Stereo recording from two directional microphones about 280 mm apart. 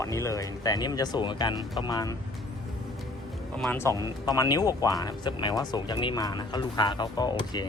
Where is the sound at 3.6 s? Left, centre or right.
Centre.